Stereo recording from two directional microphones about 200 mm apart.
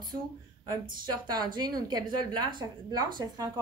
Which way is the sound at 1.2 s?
20° right (ahead or behind).